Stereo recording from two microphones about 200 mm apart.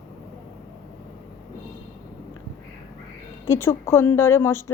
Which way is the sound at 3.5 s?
15° left (ahead or behind).